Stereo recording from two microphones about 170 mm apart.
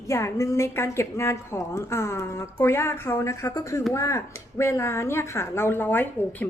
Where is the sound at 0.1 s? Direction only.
15° left (ahead or behind).